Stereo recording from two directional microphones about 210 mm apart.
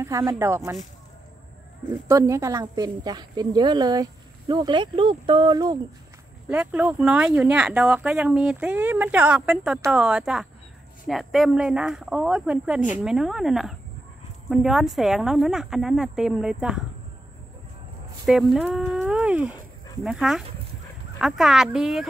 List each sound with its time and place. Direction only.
0.0 s speech: 15° right (ahead or behind)
2.0 s a woman's voice: 15° right (ahead or behind)
6.5 s speech: 5° right (ahead or behind)
18.2 s speech: centre (ahead or behind)